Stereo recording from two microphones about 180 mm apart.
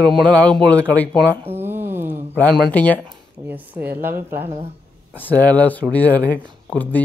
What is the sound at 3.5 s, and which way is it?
Speech, 10° right (ahead or behind).